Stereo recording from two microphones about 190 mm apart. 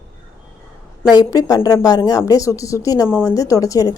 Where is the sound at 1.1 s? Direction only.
20° left (ahead or behind).